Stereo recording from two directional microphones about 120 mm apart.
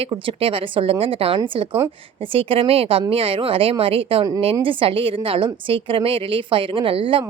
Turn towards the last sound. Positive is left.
turn(degrees=-50)  # may be behind; listen again after turning